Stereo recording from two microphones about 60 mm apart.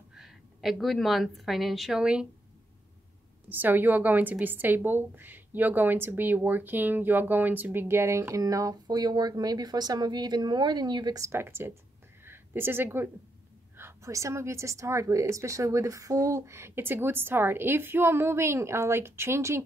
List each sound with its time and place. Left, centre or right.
0.1 s a woman's voice: centre
2.0 s speech: centre
3.4 s a woman's voice: right
7.8 s a woman's voice: right
8.4 s speech: right
11.3 s a woman's voice: right
13.7 s a sound: right
14.1 s a woman's voice: right